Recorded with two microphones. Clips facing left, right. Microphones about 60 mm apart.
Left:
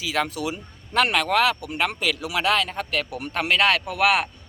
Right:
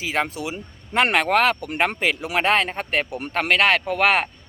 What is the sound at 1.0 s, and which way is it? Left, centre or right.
Speech, right.